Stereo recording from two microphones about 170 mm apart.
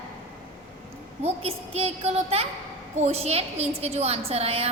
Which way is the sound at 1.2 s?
35° right (ahead or behind).